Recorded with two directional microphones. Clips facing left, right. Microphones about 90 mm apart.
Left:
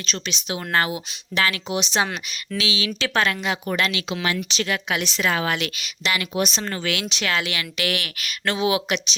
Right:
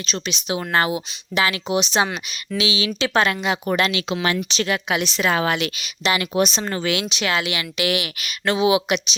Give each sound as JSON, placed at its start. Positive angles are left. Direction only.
{"t": 0.0, "sound": "speech", "side_deg": -10}
{"t": 4.7, "sound": "speech", "side_deg": -15}